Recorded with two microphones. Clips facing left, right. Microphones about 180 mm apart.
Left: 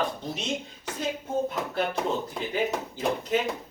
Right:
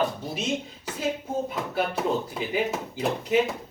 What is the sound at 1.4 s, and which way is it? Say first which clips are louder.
A man's voice: even; 5° right (ahead or behind).